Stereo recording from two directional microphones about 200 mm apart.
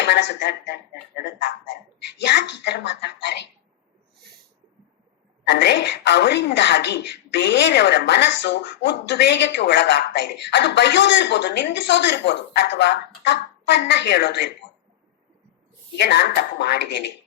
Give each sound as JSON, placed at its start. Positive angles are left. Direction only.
{"t": 0.0, "sound": "speech", "side_deg": 60}
{"t": 1.4, "sound": "a sound", "side_deg": 60}
{"t": 2.2, "sound": "a woman's voice", "side_deg": 60}
{"t": 5.5, "sound": "a woman's voice", "side_deg": 60}
{"t": 16.0, "sound": "a woman's voice", "side_deg": 60}